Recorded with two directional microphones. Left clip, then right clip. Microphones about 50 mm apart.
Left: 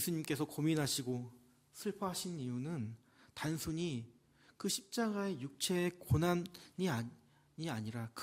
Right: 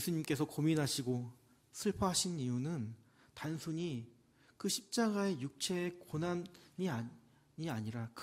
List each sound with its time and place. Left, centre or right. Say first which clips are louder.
0.0 s speech: right 1 dB; centre
1.7 s speech: right 4 dB; right
2.0 s speech: right 7 dB; right
2.4 s speech: right 3 dB; centre
3.5 s speech: right 1 dB; left
4.6 s speech: right 2 dB; centre
5.7 s speech: left 4 dB; left
6.1 s speech: left 4 dB; left
6.5 s speech: left 2 dB; left
7.5 s speech: even; centre